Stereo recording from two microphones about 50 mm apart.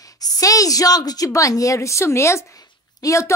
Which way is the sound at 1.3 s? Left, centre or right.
Left.